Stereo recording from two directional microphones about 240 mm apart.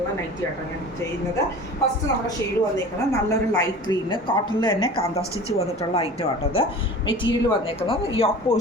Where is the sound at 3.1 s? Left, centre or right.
Centre.